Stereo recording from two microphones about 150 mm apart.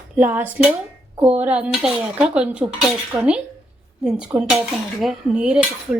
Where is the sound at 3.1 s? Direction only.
30° right (ahead or behind).